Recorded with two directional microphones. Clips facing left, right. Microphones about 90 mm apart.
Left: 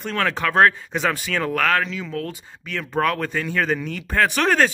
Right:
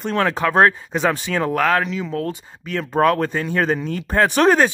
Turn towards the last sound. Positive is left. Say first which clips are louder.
# right 4 dB
turn(degrees=-25)  # may be behind; listen again after turning